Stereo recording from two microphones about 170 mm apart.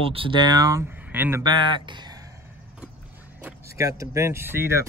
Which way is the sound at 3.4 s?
15° right (ahead or behind).